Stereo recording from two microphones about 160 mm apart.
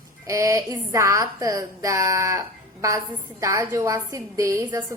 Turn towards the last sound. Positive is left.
turn(degrees=-20)  # may be behind; listen again after turning